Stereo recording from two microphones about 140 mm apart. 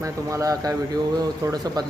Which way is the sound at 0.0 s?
20° right (ahead or behind).